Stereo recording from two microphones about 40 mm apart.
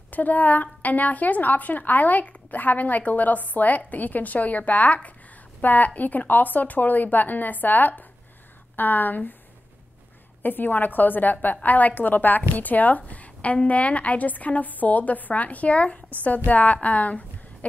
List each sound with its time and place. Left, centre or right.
0.1 s a woman's voice: left
10.4 s a woman's voice: left